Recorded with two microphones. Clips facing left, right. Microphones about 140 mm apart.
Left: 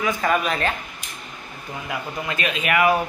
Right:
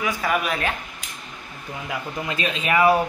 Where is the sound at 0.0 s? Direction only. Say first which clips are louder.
Left 2 dB; 5° right (ahead or behind).